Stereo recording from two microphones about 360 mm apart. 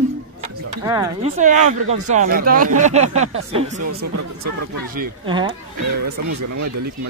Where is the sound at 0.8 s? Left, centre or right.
Centre.